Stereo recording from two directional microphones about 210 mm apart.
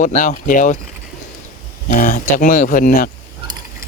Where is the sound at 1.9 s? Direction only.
40° left (ahead or behind).